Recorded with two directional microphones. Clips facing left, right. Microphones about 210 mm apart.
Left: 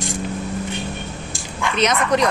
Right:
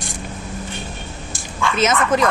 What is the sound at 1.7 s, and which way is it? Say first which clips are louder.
Speech: even; 5° right (ahead or behind).